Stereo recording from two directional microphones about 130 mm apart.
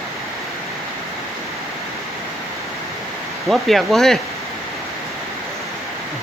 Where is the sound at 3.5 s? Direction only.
Centre (ahead or behind).